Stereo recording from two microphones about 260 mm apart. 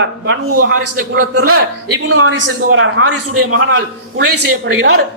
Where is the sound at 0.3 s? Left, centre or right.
Right.